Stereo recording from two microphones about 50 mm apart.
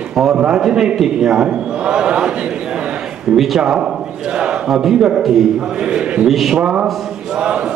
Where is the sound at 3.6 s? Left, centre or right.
Centre.